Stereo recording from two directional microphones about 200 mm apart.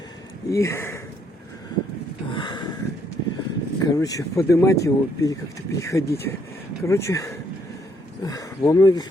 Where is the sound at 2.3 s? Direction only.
25° left (ahead or behind).